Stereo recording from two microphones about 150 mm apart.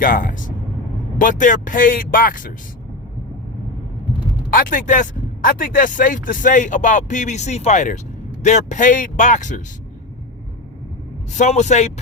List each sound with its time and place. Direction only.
0.0 s vehicle: 70° left (ahead or behind)
1.2 s speech: 60° left (ahead or behind)
4.5 s speech: 65° left (ahead or behind)
11.3 s a man's voice: 50° left (ahead or behind)